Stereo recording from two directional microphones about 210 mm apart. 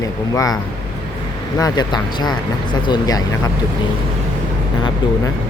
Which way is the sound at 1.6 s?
20° left (ahead or behind).